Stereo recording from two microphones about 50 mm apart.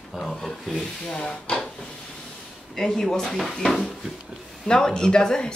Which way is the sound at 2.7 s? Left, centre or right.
Centre.